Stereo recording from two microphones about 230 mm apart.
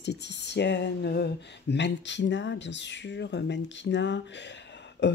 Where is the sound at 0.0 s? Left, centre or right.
Left.